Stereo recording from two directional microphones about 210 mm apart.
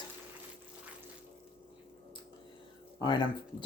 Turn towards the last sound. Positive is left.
turn(degrees=20)  # may be behind; listen again after turning